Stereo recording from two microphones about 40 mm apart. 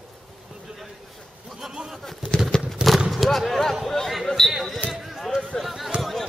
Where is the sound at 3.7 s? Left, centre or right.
Centre.